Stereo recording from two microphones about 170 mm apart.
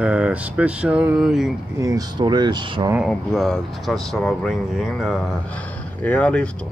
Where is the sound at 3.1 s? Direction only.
5° left (ahead or behind).